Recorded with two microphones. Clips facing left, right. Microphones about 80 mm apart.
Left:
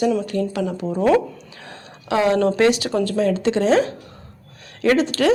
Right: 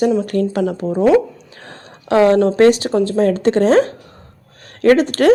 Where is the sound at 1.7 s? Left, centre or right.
Right.